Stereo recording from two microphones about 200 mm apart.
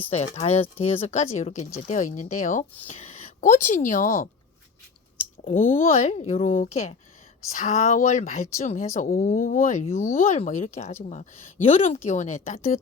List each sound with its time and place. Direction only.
0.1 s speech: 35° left (ahead or behind)
5.5 s speech: 45° left (ahead or behind)